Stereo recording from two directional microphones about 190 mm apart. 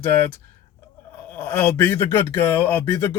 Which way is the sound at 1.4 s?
10° left (ahead or behind).